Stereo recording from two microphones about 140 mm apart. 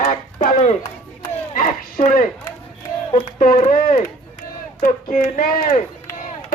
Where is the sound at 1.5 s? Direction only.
70° left (ahead or behind).